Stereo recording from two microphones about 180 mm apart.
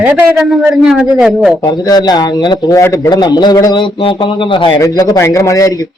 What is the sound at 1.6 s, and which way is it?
A man's voice, 20° left (ahead or behind).